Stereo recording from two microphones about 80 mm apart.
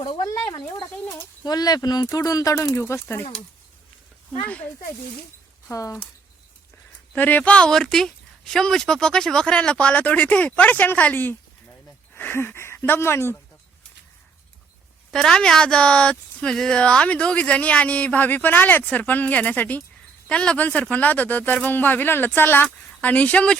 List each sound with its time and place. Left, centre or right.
0.3 s speech: left
1.5 s speech: left
2.0 s speech: left
2.6 s speech: left
5.7 s speech: left
7.1 s a woman's voice: left
15.1 s a woman's voice: centre